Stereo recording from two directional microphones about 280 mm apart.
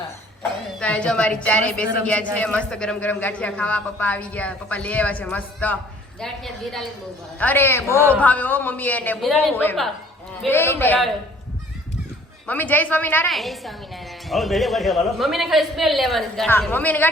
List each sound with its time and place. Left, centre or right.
0.8 s a woman's voice: centre
12.5 s a woman's voice: centre